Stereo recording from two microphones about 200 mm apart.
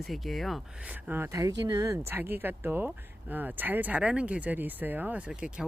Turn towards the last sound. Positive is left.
turn(degrees=-5)  # may be behind; listen again after turning